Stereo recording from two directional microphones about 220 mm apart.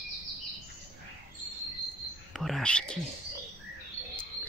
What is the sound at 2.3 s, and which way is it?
Speech, centre (ahead or behind).